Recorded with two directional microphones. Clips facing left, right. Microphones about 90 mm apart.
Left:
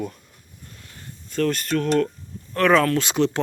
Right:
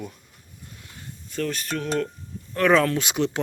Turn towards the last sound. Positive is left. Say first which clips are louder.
# left 4 dB
turn(degrees=-10)  # may be behind; listen again after turning